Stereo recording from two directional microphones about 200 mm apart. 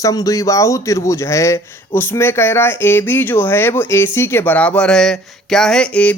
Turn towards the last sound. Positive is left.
turn(degrees=5)  # may be behind; listen again after turning